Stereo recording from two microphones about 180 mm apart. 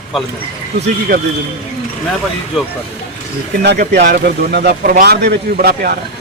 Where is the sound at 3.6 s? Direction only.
65° right (ahead or behind).